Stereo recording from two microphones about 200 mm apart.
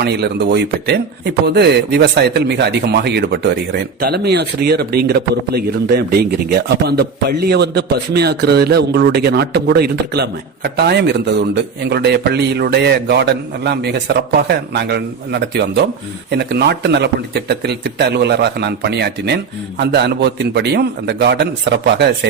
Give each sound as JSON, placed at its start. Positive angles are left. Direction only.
{"t": 0.0, "sound": "a man's voice", "side_deg": -55}